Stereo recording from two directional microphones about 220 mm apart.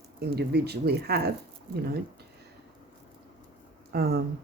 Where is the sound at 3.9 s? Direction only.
45° right (ahead or behind).